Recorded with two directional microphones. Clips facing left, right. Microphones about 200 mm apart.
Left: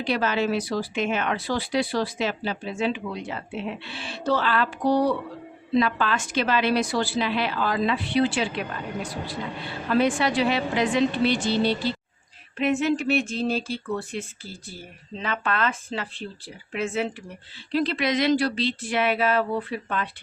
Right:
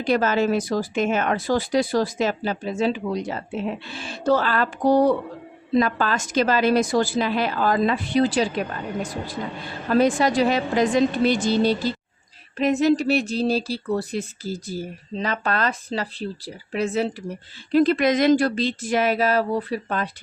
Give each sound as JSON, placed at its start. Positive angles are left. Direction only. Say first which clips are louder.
{"t": 0.0, "sound": "a woman's voice", "louder": "right 4 dB", "side_deg": -45}